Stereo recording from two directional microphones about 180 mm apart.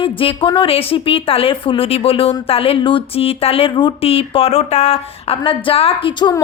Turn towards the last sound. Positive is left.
turn(degrees=25)  # may be behind; listen again after turning